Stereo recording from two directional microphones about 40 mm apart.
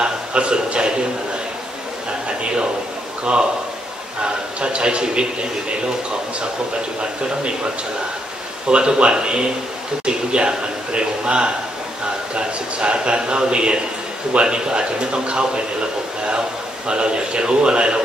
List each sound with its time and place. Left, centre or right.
0.0 s a sound: right
4.2 s a man's voice: right
8.6 s a man's voice: right